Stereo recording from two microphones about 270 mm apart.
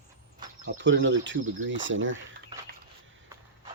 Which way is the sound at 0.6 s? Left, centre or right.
Right.